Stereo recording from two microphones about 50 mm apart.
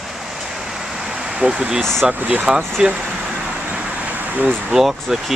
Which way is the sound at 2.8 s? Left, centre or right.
Centre.